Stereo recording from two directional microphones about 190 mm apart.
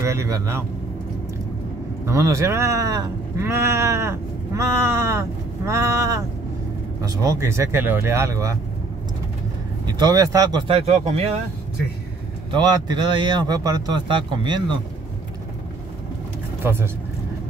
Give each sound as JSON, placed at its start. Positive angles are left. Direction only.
{"t": 0.0, "sound": "speech", "side_deg": -15}
{"t": 2.0, "sound": "speech", "side_deg": -15}
{"t": 9.8, "sound": "speech", "side_deg": -20}
{"t": 10.9, "sound": "speech", "side_deg": -35}
{"t": 12.4, "sound": "speech", "side_deg": -20}
{"t": 16.6, "sound": "speech", "side_deg": -10}